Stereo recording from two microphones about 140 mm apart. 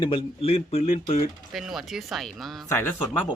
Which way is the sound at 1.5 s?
Centre (ahead or behind).